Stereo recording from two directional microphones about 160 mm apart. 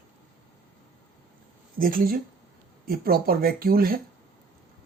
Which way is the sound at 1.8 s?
60° right (ahead or behind).